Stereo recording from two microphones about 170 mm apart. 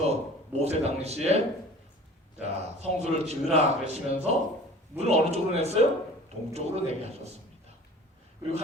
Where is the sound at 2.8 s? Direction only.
40° right (ahead or behind).